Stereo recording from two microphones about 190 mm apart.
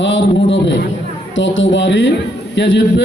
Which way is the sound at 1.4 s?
80° left.